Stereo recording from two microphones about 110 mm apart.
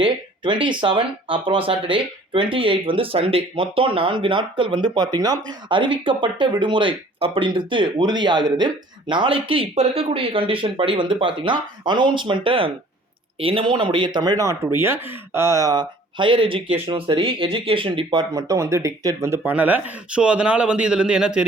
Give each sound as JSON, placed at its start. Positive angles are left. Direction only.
{"t": 0.0, "sound": "speech", "side_deg": -45}
{"t": 9.7, "sound": "speech", "side_deg": -70}
{"t": 19.5, "sound": "speech", "side_deg": -15}